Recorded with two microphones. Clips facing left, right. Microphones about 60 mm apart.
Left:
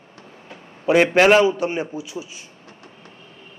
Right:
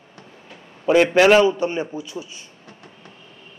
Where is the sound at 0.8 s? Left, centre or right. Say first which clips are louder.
Even; centre.